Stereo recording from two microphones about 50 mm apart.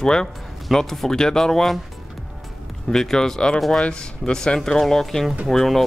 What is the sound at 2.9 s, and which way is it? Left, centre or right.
Speech, centre.